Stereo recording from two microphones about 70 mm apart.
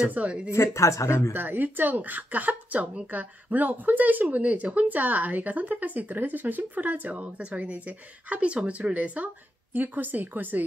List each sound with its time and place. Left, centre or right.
0.1 s speech: centre
0.5 s speech: left
1.3 s speech: right